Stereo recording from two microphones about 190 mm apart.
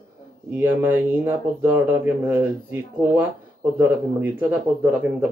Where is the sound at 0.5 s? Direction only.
10° right (ahead or behind).